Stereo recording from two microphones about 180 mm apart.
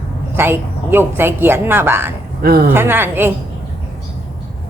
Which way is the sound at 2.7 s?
10° right (ahead or behind).